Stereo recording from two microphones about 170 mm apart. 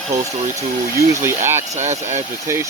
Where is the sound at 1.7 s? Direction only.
40° right (ahead or behind).